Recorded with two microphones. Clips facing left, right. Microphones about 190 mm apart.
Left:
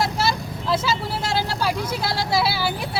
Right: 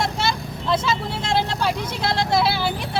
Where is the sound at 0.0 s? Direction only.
5° left (ahead or behind).